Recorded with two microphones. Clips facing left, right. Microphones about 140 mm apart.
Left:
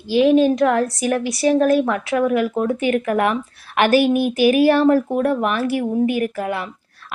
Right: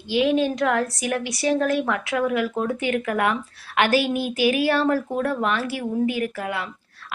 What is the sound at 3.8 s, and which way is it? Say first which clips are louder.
Speech: left 8 dB; 45° left (ahead or behind).